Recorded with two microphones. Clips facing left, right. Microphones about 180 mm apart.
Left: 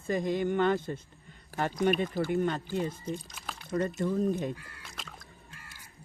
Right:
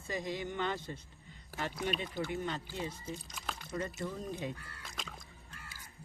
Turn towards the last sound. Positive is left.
turn(degrees=0)  # may be behind; listen again after turning